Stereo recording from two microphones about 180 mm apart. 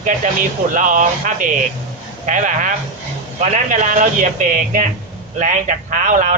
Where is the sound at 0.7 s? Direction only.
45° right (ahead or behind).